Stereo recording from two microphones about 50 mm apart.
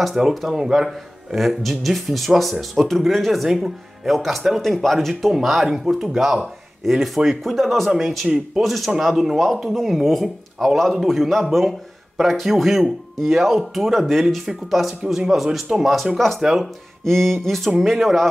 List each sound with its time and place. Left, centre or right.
0.0 s speech: centre
17.0 s speech: centre